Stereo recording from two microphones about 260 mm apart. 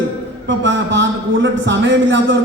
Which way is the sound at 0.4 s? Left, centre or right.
Right.